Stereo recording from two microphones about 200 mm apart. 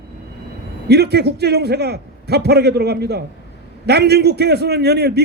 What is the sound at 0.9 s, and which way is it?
A man's voice, 55° right (ahead or behind).